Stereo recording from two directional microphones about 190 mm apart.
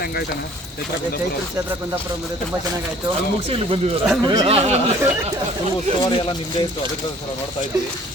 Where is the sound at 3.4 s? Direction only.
30° right (ahead or behind).